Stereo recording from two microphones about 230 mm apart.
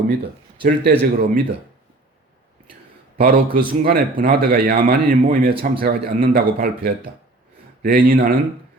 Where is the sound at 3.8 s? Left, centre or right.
Right.